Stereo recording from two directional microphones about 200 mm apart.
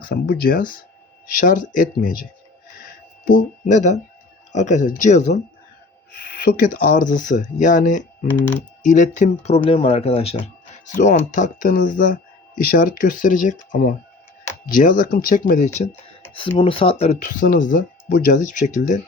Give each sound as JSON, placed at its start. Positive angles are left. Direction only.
{"t": 0.1, "sound": "speech", "side_deg": 50}
{"t": 3.2, "sound": "speech", "side_deg": 40}
{"t": 6.1, "sound": "speech", "side_deg": 50}
{"t": 10.9, "sound": "speech", "side_deg": 40}